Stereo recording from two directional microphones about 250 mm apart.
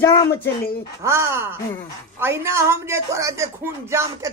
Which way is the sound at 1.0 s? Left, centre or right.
Centre.